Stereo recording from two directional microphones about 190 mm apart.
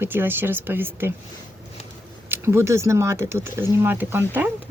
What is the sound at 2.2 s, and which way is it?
Speech, 10° right (ahead or behind).